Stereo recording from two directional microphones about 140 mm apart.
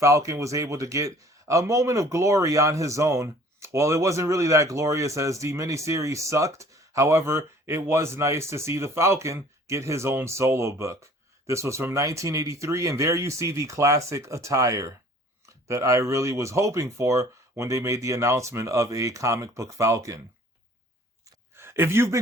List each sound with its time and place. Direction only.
0.0 s a man's voice: 20° right (ahead or behind)
21.5 s speech: 15° right (ahead or behind)